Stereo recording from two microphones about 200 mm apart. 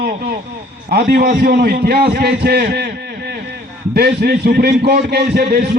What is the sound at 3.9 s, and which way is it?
A man's voice, 55° right (ahead or behind).